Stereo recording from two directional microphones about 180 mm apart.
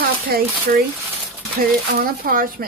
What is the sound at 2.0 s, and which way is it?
Speech, 55° right (ahead or behind).